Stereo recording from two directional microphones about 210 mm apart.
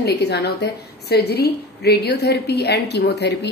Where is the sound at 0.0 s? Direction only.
50° left (ahead or behind).